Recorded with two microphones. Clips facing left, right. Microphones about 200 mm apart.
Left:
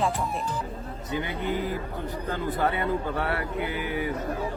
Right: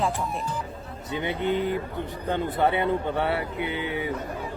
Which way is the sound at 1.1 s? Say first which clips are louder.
Right 3 dB; 25° right (ahead or behind).